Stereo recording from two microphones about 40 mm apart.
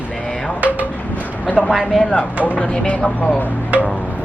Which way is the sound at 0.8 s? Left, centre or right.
Left.